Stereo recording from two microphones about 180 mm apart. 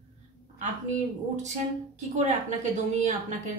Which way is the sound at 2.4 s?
40° right (ahead or behind).